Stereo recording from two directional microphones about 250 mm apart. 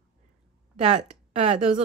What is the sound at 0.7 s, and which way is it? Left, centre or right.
Speech, right.